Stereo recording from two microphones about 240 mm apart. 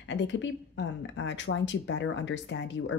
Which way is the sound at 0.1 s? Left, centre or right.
Left.